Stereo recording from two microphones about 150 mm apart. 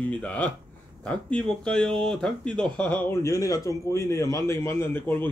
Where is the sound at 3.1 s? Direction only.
20° left (ahead or behind).